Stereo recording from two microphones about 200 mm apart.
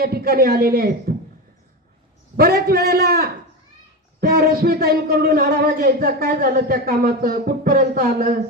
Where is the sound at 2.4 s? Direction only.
50° right (ahead or behind).